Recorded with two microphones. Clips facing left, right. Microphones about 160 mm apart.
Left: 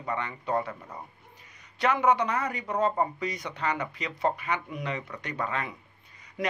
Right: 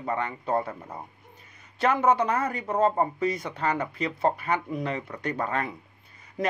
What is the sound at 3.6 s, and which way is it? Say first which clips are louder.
Speech: right 1 dB; 50° right (ahead or behind).